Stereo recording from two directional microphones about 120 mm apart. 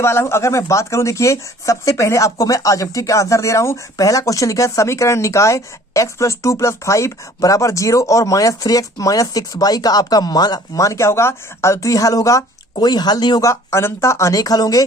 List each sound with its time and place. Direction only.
0.0 s speech: 20° left (ahead or behind); by 13.5 s 35° left (ahead or behind)
13.5 s speech: 25° left (ahead or behind)